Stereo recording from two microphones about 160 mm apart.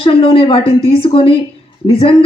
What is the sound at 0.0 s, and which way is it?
Speech, 35° left (ahead or behind).